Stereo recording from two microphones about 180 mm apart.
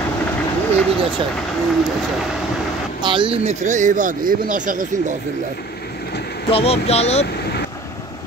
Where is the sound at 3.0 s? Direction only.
25° right (ahead or behind); by 4.9 s 50° right (ahead or behind).